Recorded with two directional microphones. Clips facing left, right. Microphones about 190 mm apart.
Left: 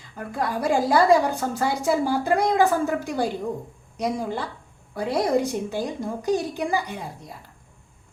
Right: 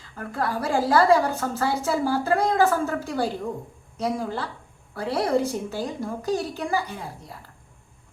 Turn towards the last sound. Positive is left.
turn(degrees=15)  # may be behind; listen again after turning